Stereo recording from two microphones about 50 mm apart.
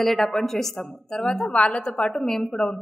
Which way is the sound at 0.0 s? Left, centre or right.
Centre.